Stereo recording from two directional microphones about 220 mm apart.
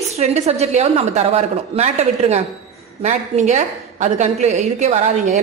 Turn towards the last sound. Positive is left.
turn(degrees=-30)  # may be behind; listen again after turning